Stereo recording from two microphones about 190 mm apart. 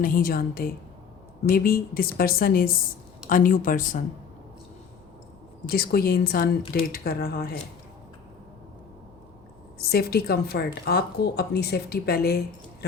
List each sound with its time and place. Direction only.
0.0 s speech: 50° left (ahead or behind)
5.6 s speech: 55° left (ahead or behind)
9.7 s a woman's voice: 55° left (ahead or behind)